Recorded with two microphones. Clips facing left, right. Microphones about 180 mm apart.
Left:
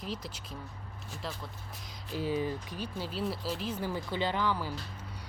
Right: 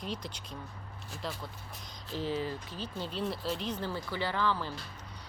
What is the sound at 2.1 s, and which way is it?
Speech, 10° left (ahead or behind).